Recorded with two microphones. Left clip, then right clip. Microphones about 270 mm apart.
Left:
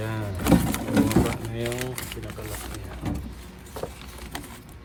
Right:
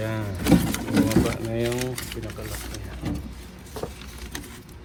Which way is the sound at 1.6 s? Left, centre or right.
Left.